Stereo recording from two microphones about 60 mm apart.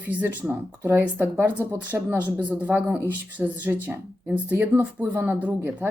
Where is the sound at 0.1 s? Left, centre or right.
Right.